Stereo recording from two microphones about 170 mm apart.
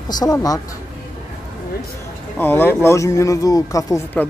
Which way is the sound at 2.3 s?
10° left (ahead or behind).